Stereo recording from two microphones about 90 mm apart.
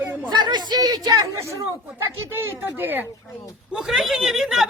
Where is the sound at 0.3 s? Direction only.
55° right (ahead or behind).